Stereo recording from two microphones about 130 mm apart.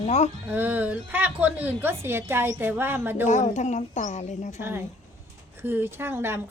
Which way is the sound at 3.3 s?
70° left (ahead or behind).